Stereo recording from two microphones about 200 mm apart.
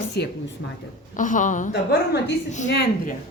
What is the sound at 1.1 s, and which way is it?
Speech, 40° left (ahead or behind).